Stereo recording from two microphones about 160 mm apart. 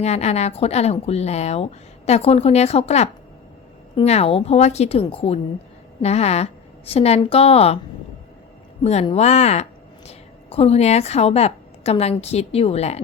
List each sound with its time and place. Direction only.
0.0 s a woman's voice: 45° left (ahead or behind)
8.8 s a woman's voice: 45° left (ahead or behind)